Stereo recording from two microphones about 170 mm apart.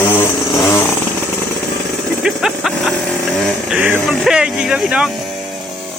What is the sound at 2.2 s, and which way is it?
Vehicle, centre (ahead or behind).